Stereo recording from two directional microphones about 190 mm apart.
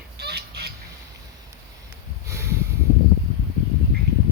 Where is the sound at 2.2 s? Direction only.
15° right (ahead or behind).